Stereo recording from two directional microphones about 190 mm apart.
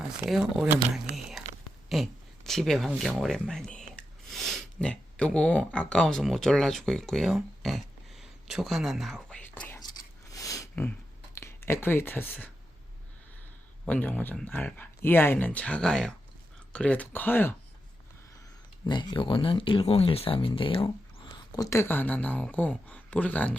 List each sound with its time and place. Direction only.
0.2 s speech: centre (ahead or behind)
1.1 s whispering: centre (ahead or behind)
1.9 s a sound: centre (ahead or behind)
11.3 s speech: 15° left (ahead or behind)
13.8 s speech: 10° left (ahead or behind)
18.9 s speech: 25° left (ahead or behind); by 23.6 s 10° left (ahead or behind)